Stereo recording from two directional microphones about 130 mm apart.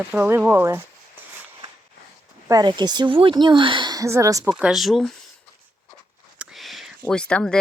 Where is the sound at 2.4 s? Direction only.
30° right (ahead or behind).